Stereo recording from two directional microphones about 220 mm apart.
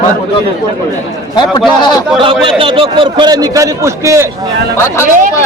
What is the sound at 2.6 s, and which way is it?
A man's voice, 25° right (ahead or behind).